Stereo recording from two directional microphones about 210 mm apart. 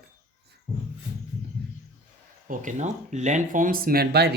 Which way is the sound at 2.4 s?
40° right (ahead or behind).